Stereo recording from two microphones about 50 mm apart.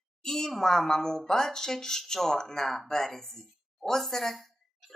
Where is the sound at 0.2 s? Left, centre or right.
Centre.